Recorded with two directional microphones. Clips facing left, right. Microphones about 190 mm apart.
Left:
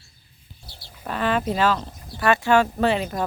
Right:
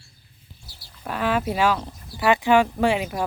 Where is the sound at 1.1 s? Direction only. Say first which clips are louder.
Left 1 dB; 10° right (ahead or behind).